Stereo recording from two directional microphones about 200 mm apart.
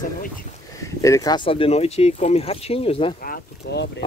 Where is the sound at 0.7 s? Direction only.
15° left (ahead or behind).